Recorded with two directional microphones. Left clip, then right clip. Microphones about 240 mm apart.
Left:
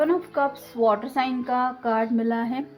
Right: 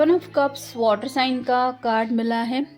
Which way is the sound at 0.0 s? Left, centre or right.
Right.